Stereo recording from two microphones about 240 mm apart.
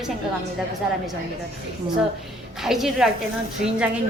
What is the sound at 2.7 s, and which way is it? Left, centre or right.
Speech, centre.